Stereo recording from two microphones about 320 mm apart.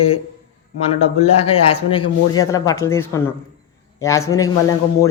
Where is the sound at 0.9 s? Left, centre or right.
Centre.